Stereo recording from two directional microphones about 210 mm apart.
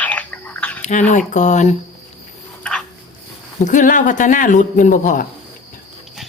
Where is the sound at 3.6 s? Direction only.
35° left (ahead or behind).